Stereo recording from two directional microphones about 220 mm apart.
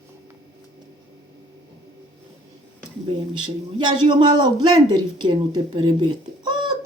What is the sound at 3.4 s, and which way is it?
A man's voice, 20° right (ahead or behind).